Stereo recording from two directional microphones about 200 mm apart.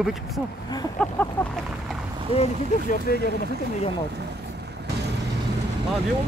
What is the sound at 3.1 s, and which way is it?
Speech, 50° left (ahead or behind).